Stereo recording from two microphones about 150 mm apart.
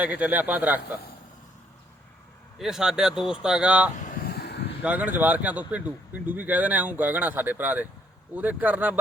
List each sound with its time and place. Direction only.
0.0 s speech: 10° right (ahead or behind)
2.6 s speech: 5° right (ahead or behind)
3.9 s a sound: 60° left (ahead or behind); by 4.7 s 90° left
4.8 s speech: 10° right (ahead or behind)